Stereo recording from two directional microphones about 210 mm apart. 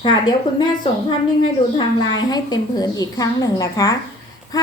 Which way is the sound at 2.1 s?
20° left (ahead or behind).